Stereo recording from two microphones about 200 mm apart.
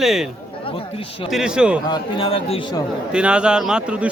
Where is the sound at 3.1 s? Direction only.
5° right (ahead or behind).